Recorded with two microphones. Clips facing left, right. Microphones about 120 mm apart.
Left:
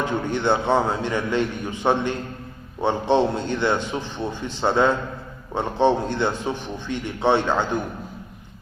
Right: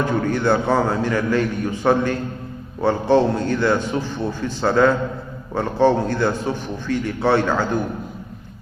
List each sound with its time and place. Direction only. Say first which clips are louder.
0.0 s a man's voice: right 3 dB; 20° left (ahead or behind)